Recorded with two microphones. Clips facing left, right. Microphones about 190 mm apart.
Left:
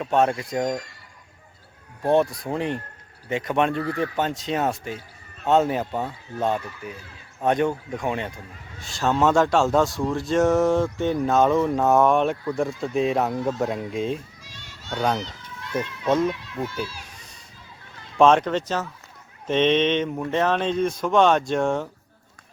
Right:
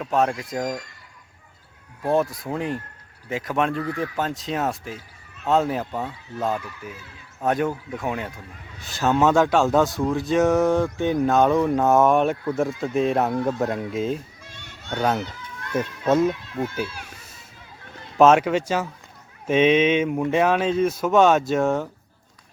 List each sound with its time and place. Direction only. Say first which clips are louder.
0.0 s speech: left 1 dB; centre (ahead or behind)
2.1 s speech: left 1 dB; centre (ahead or behind)
3.8 s speech: left 1 dB; 35° left (ahead or behind)
4.2 s speech: left 1 dB; centre (ahead or behind)
14.4 s music: right 2 dB; 55° right (ahead or behind)
14.9 s speech: right 1 dB; 5° right (ahead or behind)
15.2 s a sound: right 2 dB; 55° right (ahead or behind)
15.8 s speech: right 2 dB; 10° right (ahead or behind)
16.8 s a child's voice: right 2 dB; 55° right (ahead or behind)
18.2 s speech: right 2 dB; 5° right (ahead or behind)